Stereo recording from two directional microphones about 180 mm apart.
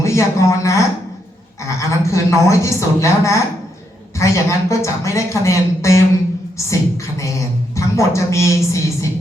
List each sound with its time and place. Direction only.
0.0 s a woman's voice: 15° left (ahead or behind)